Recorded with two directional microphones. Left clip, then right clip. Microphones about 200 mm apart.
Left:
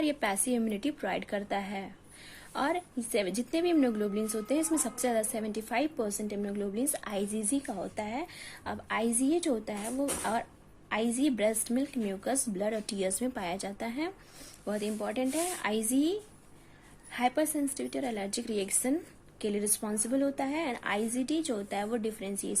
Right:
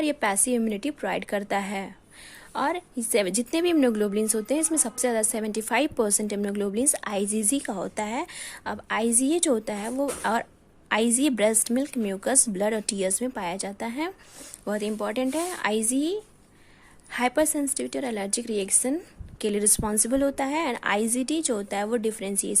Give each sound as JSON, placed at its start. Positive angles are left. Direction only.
{"t": 0.0, "sound": "a woman's voice", "side_deg": -30}